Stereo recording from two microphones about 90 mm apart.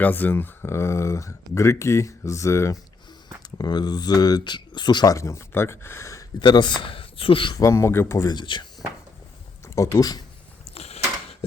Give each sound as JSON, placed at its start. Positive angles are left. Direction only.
{"t": 0.0, "sound": "speech", "side_deg": 20}
{"t": 3.6, "sound": "speech", "side_deg": 50}
{"t": 5.1, "sound": "speech", "side_deg": 35}
{"t": 6.4, "sound": "speech", "side_deg": 55}
{"t": 7.5, "sound": "speech", "side_deg": 35}
{"t": 8.3, "sound": "speech", "side_deg": 60}
{"t": 9.6, "sound": "speech", "side_deg": 35}
{"t": 10.8, "sound": "mechanisms", "side_deg": 90}